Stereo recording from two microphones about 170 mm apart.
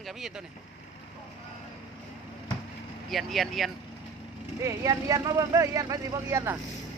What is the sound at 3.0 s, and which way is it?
Speech, centre (ahead or behind).